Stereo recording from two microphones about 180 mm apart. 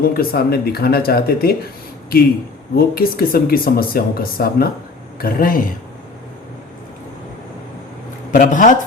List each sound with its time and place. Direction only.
0.0 s a man's voice: 55° left (ahead or behind)
8.3 s a man's voice: 45° left (ahead or behind)